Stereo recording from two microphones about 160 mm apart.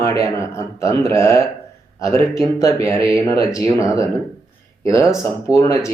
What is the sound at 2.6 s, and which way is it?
A man's voice, 20° left (ahead or behind).